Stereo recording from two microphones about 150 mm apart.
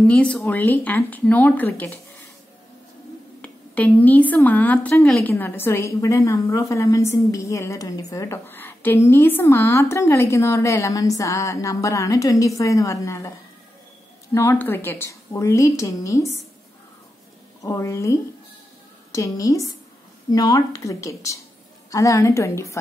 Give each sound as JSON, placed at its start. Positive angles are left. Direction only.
{"t": 0.0, "sound": "a woman's voice", "side_deg": 10}
{"t": 3.4, "sound": "a woman's voice", "side_deg": 10}
{"t": 14.3, "sound": "a woman's voice", "side_deg": 15}
{"t": 17.6, "sound": "a woman's voice", "side_deg": 20}